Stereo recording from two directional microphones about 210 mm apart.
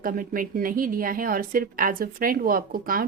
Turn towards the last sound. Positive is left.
turn(degrees=-45)  # may be behind; listen again after turning